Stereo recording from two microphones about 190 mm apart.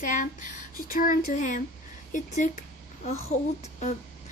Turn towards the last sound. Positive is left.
turn(degrees=40)  # may be behind; listen again after turning